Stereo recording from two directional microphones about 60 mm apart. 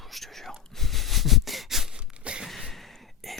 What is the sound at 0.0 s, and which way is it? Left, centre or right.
Whispering, centre.